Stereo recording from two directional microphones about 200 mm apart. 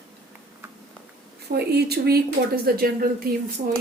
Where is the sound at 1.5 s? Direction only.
55° right (ahead or behind).